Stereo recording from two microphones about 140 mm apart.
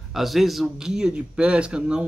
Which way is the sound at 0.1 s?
Centre (ahead or behind).